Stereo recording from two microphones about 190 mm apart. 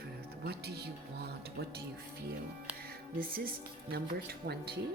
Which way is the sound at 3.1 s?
50° right (ahead or behind).